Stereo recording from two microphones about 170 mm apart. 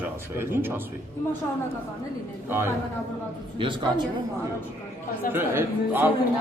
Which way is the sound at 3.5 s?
30° right (ahead or behind).